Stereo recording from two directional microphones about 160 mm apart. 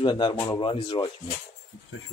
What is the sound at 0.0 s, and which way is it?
Speech, 30° left (ahead or behind).